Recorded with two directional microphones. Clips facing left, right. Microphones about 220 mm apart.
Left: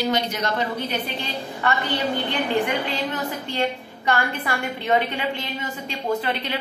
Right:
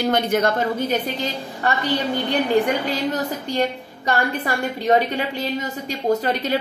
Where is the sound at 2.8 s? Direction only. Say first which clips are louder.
Right 4 dB; 40° right (ahead or behind).